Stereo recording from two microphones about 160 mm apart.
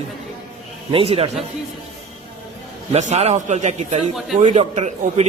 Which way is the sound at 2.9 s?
45° right (ahead or behind).